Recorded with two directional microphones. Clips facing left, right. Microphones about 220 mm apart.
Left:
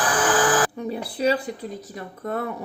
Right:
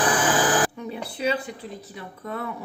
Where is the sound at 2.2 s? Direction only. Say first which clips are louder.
Left 5 dB; 45° left (ahead or behind).